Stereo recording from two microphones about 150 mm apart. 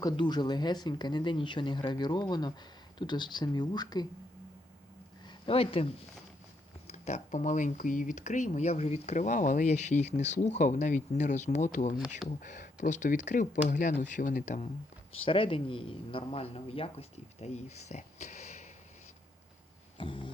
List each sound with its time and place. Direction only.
0.0 s speech: 30° left (ahead or behind)
5.2 s speech: 35° left (ahead or behind); by 14.7 s 55° left (ahead or behind)
15.2 s a man's voice: 35° left (ahead or behind)
20.0 s a man's voice: 35° left (ahead or behind)